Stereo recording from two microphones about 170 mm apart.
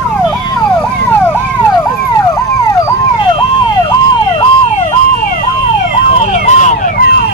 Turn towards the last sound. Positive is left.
turn(degrees=45)  # may be behind; listen again after turning